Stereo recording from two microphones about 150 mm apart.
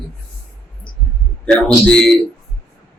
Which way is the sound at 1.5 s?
5° left (ahead or behind).